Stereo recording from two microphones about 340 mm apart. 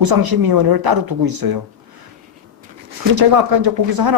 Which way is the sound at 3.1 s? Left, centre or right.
Right.